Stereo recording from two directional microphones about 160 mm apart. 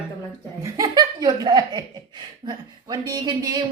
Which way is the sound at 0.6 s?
20° right (ahead or behind).